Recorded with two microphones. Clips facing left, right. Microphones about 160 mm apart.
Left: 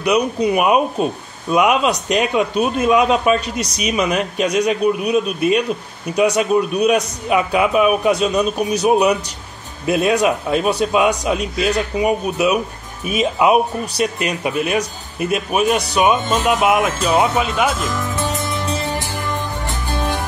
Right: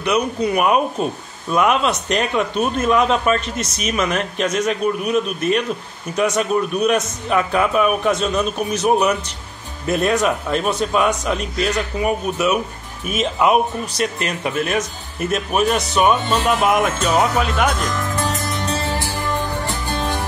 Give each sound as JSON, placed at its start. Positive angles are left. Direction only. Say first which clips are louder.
{"t": 0.0, "sound": "a man's voice", "louder": "left 2 dB", "side_deg": 15}
{"t": 17.4, "sound": "music", "louder": "left 1 dB", "side_deg": 5}
{"t": 18.9, "sound": "music", "louder": "even", "side_deg": 15}